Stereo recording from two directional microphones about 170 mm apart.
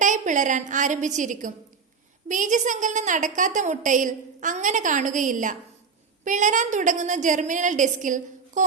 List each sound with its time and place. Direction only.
0.0 s a woman's voice: 45° right (ahead or behind)